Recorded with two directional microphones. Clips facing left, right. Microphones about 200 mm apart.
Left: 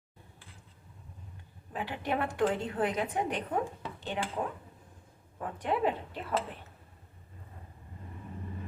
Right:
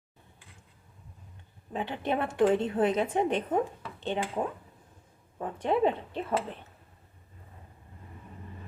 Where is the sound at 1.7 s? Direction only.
25° right (ahead or behind).